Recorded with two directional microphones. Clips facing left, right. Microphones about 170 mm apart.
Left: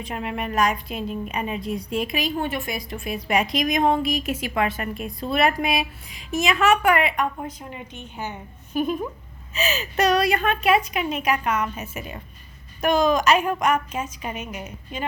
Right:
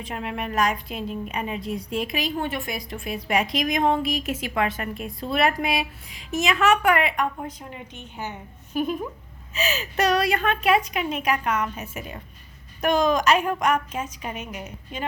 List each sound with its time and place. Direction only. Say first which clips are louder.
0.0 s a woman's voice: left 2 dB; 15° left (ahead or behind)
7.7 s a woman's voice: left 2 dB; 15° left (ahead or behind)
9.5 s a woman's voice: left 1 dB; 20° left (ahead or behind)